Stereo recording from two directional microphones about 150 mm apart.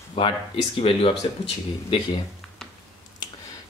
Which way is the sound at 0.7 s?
40° left (ahead or behind).